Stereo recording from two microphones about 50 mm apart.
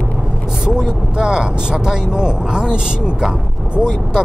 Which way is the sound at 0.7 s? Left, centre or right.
Centre.